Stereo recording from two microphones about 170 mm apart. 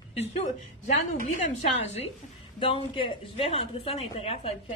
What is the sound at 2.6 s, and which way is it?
A woman's voice, 30° left (ahead or behind).